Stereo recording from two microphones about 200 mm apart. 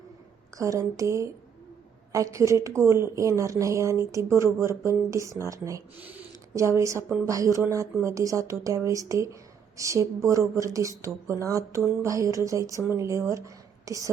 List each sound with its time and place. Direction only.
0.5 s speech: 15° right (ahead or behind)